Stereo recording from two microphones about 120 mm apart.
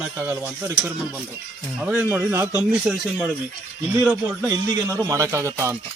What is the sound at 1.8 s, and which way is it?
Speech, 10° right (ahead or behind).